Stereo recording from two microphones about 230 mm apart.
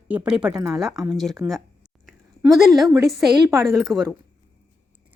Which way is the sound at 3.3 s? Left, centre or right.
Centre.